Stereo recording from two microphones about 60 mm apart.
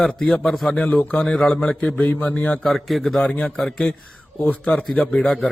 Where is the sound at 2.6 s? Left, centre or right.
Centre.